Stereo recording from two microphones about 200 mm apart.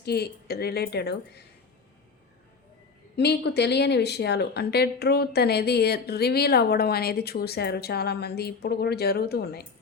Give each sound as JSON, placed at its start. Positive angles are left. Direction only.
{"t": 0.0, "sound": "speech", "side_deg": 55}
{"t": 3.2, "sound": "speech", "side_deg": 55}